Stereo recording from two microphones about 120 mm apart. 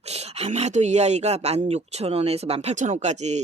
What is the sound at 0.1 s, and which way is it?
Speech, 60° right (ahead or behind).